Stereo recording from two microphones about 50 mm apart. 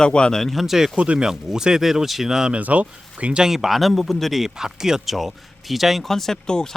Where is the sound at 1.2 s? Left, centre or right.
Centre.